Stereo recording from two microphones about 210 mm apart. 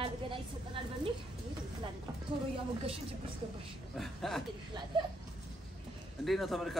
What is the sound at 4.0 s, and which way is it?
Speech, centre (ahead or behind).